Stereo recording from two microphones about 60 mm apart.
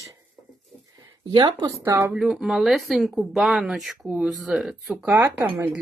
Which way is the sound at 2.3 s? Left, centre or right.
Centre.